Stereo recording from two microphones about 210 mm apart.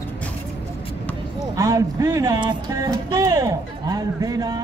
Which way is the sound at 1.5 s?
15° right (ahead or behind).